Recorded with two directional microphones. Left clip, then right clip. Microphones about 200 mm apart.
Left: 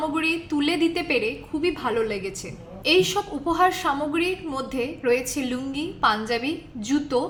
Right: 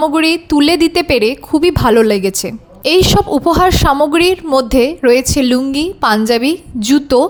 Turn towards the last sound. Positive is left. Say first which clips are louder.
# right 13 dB
turn(degrees=-55)  # may be behind; listen again after turning